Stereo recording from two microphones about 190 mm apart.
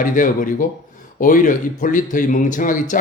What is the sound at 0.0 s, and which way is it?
Speech, 45° left (ahead or behind).